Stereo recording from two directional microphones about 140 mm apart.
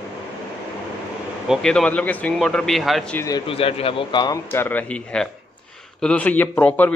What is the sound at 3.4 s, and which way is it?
Speech, 40° left (ahead or behind).